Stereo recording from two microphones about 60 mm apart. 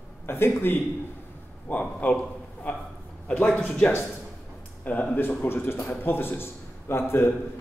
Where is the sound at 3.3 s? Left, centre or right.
Left.